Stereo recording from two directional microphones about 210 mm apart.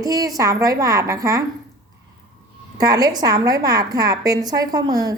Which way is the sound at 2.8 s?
15° right (ahead or behind).